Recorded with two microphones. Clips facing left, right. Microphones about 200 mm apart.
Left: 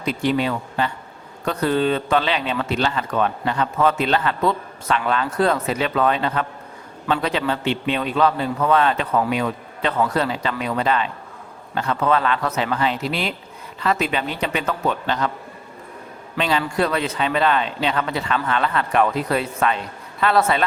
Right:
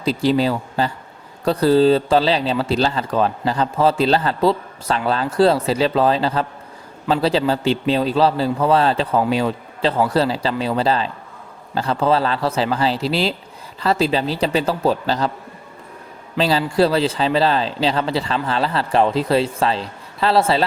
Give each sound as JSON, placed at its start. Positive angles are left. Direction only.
{"t": 0.0, "sound": "speech", "side_deg": -35}
{"t": 16.4, "sound": "speech", "side_deg": -35}